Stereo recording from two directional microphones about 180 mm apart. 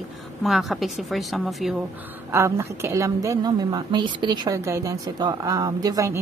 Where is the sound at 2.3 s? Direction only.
15° right (ahead or behind).